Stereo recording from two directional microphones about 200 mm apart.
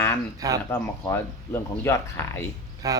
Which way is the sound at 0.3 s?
20° right (ahead or behind).